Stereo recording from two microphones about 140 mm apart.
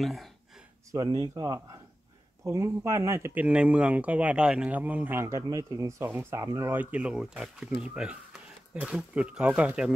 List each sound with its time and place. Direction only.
0.0 s speech: centre (ahead or behind)
0.9 s speech: 30° right (ahead or behind); by 9.9 s 10° right (ahead or behind)